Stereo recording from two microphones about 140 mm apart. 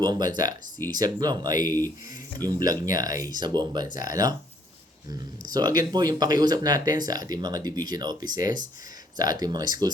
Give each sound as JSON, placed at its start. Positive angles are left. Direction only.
{"t": 0.0, "sound": "speech", "side_deg": -30}
{"t": 2.6, "sound": "speech", "side_deg": -25}